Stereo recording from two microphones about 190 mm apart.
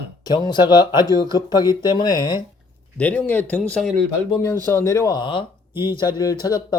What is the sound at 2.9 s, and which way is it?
Speech, 5° left (ahead or behind).